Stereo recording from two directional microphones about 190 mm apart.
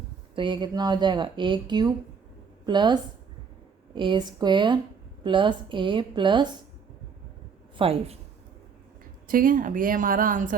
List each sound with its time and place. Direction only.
0.3 s speech: 25° right (ahead or behind)
7.8 s a woman's voice: 30° right (ahead or behind)
9.2 s a woman's voice: 45° right (ahead or behind)